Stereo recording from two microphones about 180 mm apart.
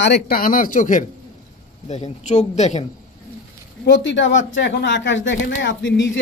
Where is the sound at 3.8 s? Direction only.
80° left.